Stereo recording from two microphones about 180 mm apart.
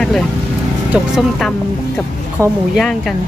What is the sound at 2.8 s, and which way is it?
Speech, centre (ahead or behind).